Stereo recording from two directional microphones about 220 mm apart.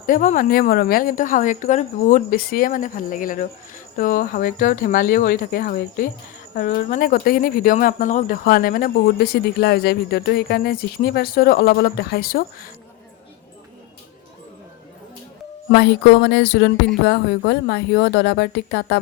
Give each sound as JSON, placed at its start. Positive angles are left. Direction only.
{"t": 0.0, "sound": "a woman's voice", "side_deg": 35}
{"t": 15.7, "sound": "speech", "side_deg": 50}